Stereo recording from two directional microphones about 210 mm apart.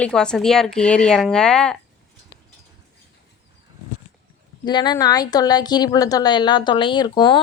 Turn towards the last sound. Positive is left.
turn(degrees=20)  # may be behind; listen again after turning